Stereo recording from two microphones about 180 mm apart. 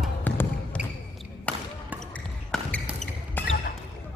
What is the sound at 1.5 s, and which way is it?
Basketball bounce, 5° left (ahead or behind).